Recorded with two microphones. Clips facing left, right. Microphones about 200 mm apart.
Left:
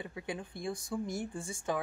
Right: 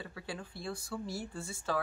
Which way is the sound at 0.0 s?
20° left (ahead or behind).